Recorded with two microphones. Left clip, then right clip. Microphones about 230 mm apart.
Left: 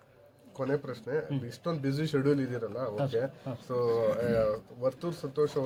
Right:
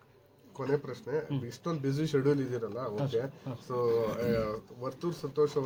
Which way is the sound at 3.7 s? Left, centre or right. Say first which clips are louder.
Left 2 dB; left.